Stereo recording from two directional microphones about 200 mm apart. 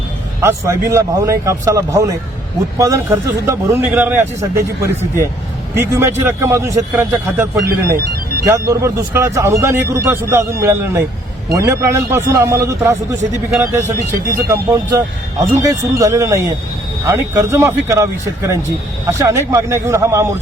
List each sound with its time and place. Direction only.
0.4 s speech: 15° right (ahead or behind)